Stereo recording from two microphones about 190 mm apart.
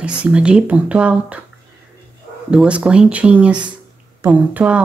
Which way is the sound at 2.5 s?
5° right (ahead or behind).